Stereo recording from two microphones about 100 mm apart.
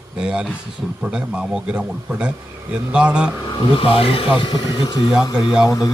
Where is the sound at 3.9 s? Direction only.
70° left (ahead or behind).